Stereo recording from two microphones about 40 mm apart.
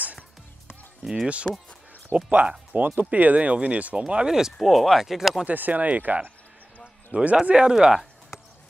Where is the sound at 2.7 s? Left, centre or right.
Right.